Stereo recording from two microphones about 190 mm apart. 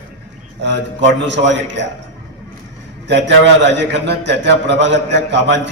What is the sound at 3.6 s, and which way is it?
A man's voice, 65° right (ahead or behind).